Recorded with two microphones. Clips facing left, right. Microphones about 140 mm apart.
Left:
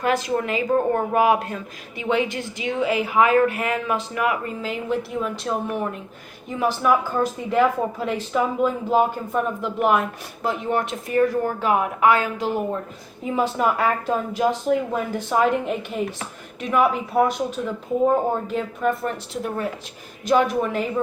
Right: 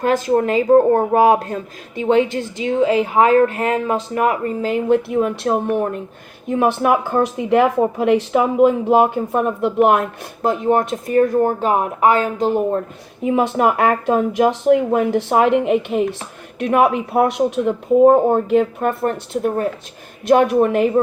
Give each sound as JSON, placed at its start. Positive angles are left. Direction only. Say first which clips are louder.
{"t": 0.3, "sound": "a woman's voice", "louder": "right 8 dB", "side_deg": -40}
{"t": 10.4, "sound": "a woman's voice", "louder": "right 7 dB", "side_deg": -45}
{"t": 13.3, "sound": "speech", "louder": "right 5 dB", "side_deg": -65}
{"t": 19.3, "sound": "speech", "louder": "right 8 dB", "side_deg": -50}
{"t": 20.2, "sound": "speech", "louder": "right 6 dB", "side_deg": -60}